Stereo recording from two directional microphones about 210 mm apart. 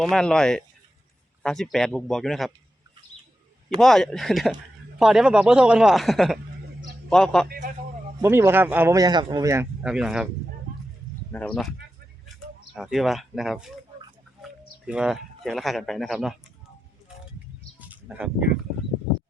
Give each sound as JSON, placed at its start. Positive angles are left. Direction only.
{"t": 0.0, "sound": "speech", "side_deg": 5}
{"t": 3.8, "sound": "speech", "side_deg": 0}
{"t": 7.4, "sound": "a man's voice", "side_deg": -45}
{"t": 8.2, "sound": "speech", "side_deg": -10}
{"t": 11.3, "sound": "speech", "side_deg": 5}
{"t": 12.7, "sound": "speech", "side_deg": 0}
{"t": 17.7, "sound": "bird", "side_deg": -5}